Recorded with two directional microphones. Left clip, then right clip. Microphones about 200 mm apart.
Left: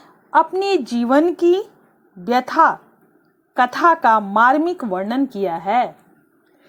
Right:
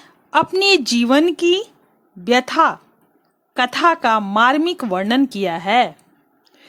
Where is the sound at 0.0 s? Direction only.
40° right (ahead or behind).